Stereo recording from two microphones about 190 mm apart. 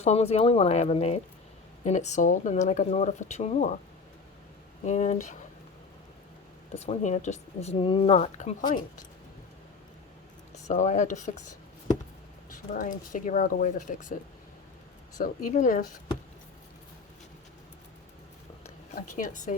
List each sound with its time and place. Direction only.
0.0 s speech: 35° left (ahead or behind)
4.8 s speech: 40° left (ahead or behind)
6.7 s speech: 35° left (ahead or behind)
10.5 s speech: 40° left (ahead or behind)
12.5 s speech: 45° left (ahead or behind)
15.2 s speech: 45° left (ahead or behind)
18.9 s speech: 45° left (ahead or behind)